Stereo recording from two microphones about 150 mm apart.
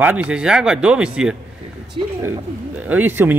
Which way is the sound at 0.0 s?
10° right (ahead or behind).